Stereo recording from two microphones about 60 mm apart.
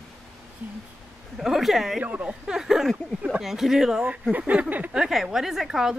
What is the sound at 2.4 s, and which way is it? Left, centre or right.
A woman's voice, centre.